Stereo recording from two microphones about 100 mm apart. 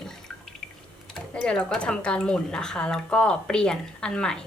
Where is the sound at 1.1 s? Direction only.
10° left (ahead or behind).